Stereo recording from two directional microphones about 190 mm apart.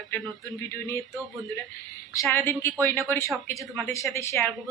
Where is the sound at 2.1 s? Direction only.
15° left (ahead or behind).